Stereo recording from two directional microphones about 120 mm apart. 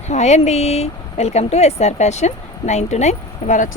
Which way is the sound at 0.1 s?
70° left (ahead or behind).